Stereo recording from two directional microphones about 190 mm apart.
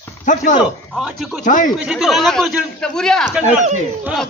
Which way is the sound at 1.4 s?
40° left (ahead or behind).